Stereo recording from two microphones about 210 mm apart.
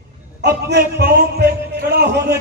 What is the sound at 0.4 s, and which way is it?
A man's voice, 50° right (ahead or behind).